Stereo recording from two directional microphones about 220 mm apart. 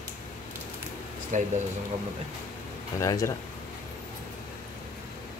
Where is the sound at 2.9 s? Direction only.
15° left (ahead or behind).